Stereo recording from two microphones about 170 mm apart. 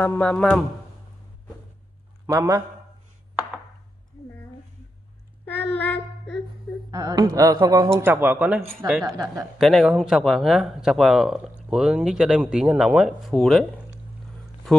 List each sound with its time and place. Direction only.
0.0 s speech: 10° left (ahead or behind)
2.2 s a man's voice: 20° right (ahead or behind)
5.4 s child singing: 10° left (ahead or behind)
6.9 s speech: 20° right (ahead or behind)
9.0 s speech: 25° right (ahead or behind)
9.6 s speech: centre (ahead or behind)
14.7 s speech: centre (ahead or behind)